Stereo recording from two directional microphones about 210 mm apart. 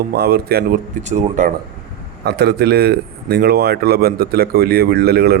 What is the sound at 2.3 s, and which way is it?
A man's voice, 50° right (ahead or behind).